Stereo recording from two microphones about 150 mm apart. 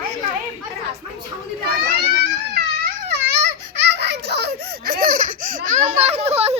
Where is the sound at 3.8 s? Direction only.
90° right.